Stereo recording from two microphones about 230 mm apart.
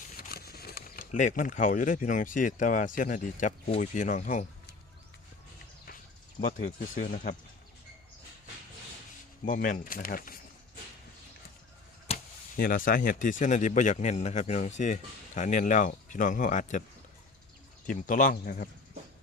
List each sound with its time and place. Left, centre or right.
0.2 s speech: left
6.9 s speech: left
9.5 s speech: left
12.1 s speech: left
17.8 s speech: left